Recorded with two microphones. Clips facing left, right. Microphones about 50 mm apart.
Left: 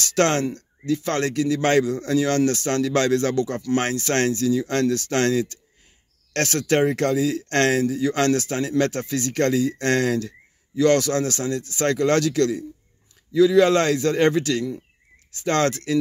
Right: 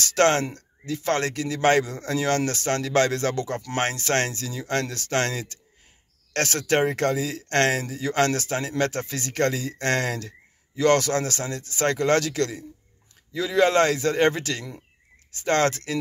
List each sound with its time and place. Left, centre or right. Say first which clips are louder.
0.0 s speech: even; right